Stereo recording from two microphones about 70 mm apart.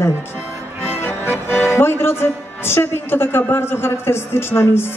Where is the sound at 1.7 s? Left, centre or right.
Left.